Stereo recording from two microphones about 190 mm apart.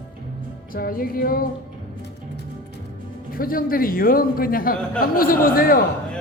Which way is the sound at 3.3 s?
50° left (ahead or behind).